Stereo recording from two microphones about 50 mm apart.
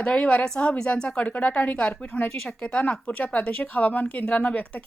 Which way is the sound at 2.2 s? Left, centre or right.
Centre.